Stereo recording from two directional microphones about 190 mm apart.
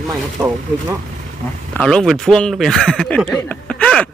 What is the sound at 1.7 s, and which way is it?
Speech, 5° left (ahead or behind).